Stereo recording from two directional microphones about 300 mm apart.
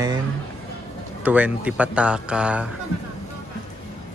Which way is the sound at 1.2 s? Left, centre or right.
Centre.